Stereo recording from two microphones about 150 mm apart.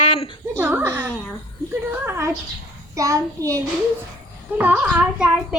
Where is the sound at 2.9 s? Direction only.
20° right (ahead or behind).